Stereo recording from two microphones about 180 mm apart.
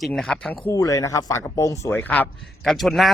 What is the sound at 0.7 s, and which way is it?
Speech, 20° left (ahead or behind).